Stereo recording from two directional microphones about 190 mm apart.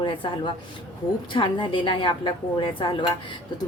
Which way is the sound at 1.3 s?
25° left (ahead or behind).